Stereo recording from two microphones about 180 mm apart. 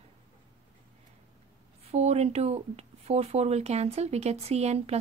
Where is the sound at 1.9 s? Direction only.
35° right (ahead or behind).